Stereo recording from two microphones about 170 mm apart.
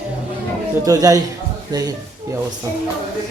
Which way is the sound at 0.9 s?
20° right (ahead or behind).